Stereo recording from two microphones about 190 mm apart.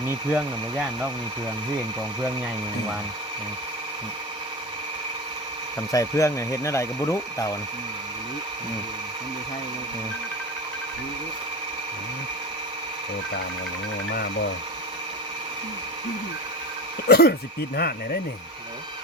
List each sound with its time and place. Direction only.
0.1 s speech: 5° right (ahead or behind)
5.9 s speech: 15° left (ahead or behind)
17.1 s speech: 55° left (ahead or behind)